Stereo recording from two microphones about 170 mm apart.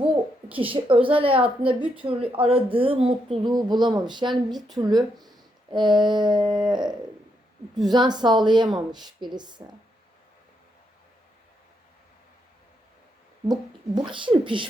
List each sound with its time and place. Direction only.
0.7 s a woman's voice: 30° right (ahead or behind)
13.5 s speech: 25° right (ahead or behind)